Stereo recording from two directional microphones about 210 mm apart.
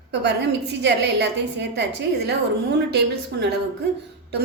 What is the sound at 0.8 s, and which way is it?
A woman's voice, 55° right (ahead or behind).